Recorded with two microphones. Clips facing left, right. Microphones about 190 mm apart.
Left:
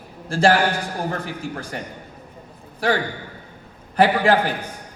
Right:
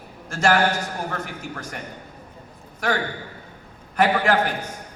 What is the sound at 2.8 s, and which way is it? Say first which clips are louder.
A man's voice: left 3 dB; 30° left (ahead or behind).